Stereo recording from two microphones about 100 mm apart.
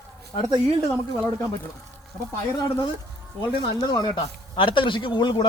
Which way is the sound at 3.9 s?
45° left (ahead or behind).